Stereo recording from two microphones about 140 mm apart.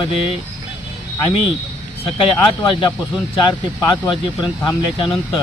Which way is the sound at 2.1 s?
40° left (ahead or behind).